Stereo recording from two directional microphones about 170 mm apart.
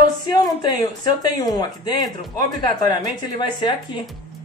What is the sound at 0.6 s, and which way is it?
A woman's voice, 25° left (ahead or behind).